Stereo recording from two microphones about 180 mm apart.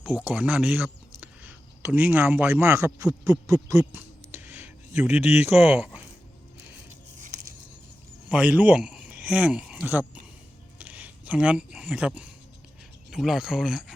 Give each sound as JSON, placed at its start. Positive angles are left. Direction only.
{"t": 0.0, "sound": "speech", "side_deg": -10}
{"t": 5.4, "sound": "speech", "side_deg": 35}
{"t": 5.7, "sound": "speech", "side_deg": -5}
{"t": 8.3, "sound": "speech", "side_deg": -5}